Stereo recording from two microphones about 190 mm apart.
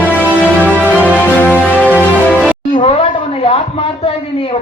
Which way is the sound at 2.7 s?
30° left (ahead or behind).